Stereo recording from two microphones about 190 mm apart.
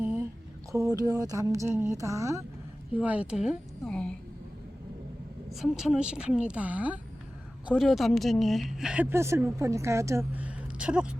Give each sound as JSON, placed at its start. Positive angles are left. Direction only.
{"t": 0.0, "sound": "a sound", "side_deg": -10}
{"t": 0.7, "sound": "speech", "side_deg": -15}
{"t": 5.5, "sound": "speech", "side_deg": 0}